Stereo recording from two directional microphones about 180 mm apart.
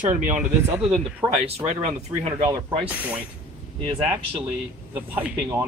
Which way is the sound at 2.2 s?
30° right (ahead or behind).